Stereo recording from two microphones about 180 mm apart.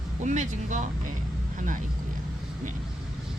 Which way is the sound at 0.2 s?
45° right (ahead or behind).